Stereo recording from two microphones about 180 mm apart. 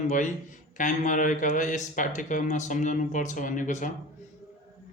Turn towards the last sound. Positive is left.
turn(degrees=45)  # may be behind; listen again after turning